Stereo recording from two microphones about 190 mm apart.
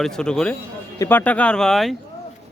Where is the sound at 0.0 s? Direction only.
5° left (ahead or behind).